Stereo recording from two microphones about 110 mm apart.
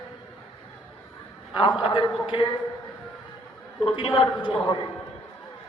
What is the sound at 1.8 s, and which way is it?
Speech, 55° left (ahead or behind).